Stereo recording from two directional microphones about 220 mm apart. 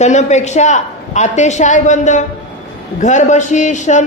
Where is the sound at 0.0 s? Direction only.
30° left (ahead or behind).